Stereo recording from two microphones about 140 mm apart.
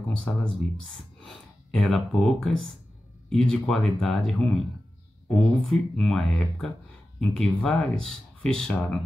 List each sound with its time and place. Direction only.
0.1 s speech: 5° left (ahead or behind)